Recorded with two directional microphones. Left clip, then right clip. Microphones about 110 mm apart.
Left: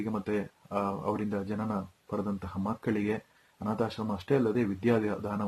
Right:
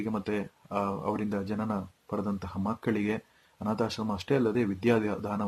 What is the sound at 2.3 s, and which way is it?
Speech, 20° right (ahead or behind).